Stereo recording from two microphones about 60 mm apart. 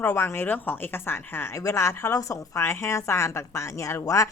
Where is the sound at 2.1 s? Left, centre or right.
Left.